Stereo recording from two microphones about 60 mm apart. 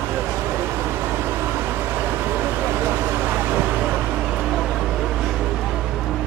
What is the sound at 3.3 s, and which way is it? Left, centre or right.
Vehicle, right.